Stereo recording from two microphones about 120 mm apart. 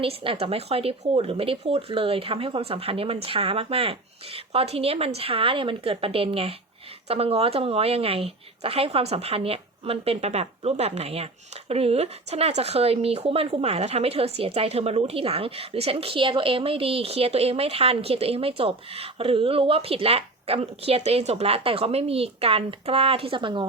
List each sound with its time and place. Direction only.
0.0 s speech: 50° right (ahead or behind)